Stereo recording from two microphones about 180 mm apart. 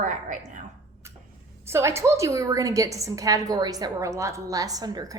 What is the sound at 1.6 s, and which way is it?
A woman's voice, 15° right (ahead or behind).